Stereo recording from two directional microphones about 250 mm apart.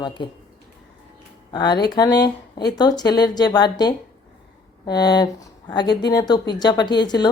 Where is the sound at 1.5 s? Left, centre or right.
Centre.